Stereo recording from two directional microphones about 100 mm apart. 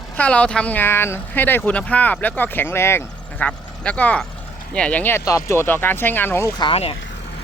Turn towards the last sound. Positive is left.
turn(degrees=80)